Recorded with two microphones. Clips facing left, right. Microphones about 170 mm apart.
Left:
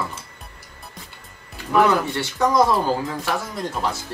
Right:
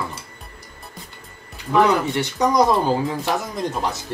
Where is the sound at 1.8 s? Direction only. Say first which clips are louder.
Right 1 dB; 15° right (ahead or behind).